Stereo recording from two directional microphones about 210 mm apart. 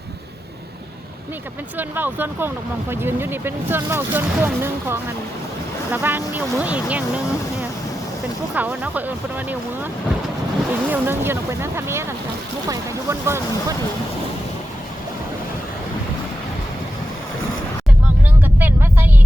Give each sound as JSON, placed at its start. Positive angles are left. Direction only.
{"t": 1.8, "sound": "speech", "side_deg": -10}
{"t": 8.5, "sound": "speech", "side_deg": -10}
{"t": 10.7, "sound": "speech", "side_deg": -10}
{"t": 18.6, "sound": "vehicle", "side_deg": -10}